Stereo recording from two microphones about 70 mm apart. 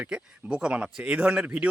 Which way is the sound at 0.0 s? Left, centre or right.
Centre.